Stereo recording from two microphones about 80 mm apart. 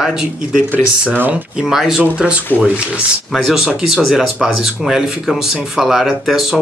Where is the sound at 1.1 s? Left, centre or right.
Right.